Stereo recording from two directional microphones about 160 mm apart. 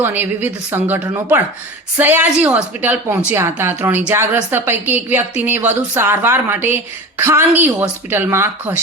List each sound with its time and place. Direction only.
0.0 s a woman's voice: 10° right (ahead or behind)